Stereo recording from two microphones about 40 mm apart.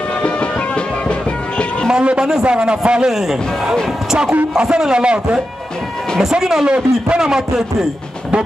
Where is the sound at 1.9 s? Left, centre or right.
Right.